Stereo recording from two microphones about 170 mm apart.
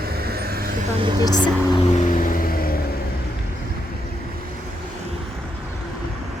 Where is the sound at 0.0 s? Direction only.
65° right (ahead or behind).